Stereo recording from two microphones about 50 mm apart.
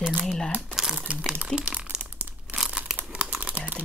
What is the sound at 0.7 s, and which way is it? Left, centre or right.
Crumpling, centre.